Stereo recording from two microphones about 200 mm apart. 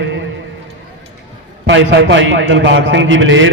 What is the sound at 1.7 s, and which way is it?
A man's voice, 60° right (ahead or behind).